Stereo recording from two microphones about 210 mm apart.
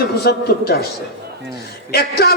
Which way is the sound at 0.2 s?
50° left (ahead or behind).